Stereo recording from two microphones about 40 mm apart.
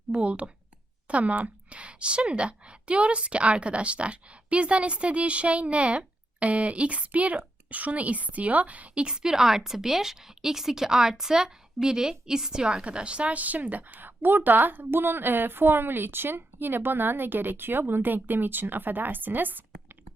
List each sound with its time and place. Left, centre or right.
0.1 s a woman's voice: right
9.0 s speech: centre; by 14.1 s right
14.2 s a woman's voice: right